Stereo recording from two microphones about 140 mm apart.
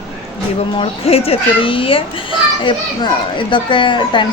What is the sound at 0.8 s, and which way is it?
A child's voice, 45° left (ahead or behind).